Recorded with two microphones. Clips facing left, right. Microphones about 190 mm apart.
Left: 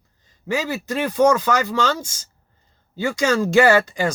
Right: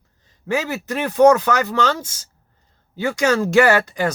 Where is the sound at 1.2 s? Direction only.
60° right (ahead or behind).